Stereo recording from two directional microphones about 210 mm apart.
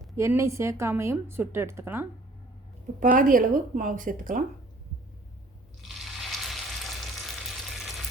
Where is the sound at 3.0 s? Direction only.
40° right (ahead or behind).